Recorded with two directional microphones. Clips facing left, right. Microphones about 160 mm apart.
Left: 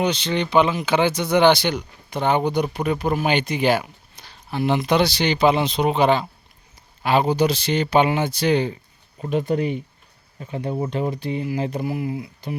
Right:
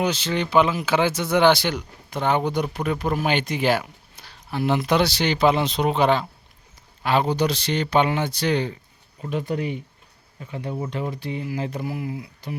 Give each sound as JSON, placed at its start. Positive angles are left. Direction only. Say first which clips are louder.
{"t": 0.0, "sound": "speech", "louder": "left 2 dB", "side_deg": -5}
{"t": 9.2, "sound": "speech", "louder": "left 4 dB", "side_deg": 25}